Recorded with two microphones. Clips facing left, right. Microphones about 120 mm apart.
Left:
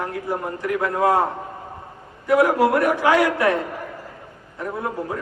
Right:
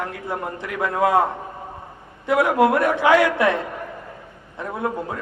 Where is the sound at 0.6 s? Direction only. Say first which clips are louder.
Left 1 dB; 20° right (ahead or behind).